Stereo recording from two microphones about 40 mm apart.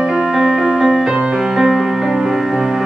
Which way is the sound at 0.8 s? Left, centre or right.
Centre.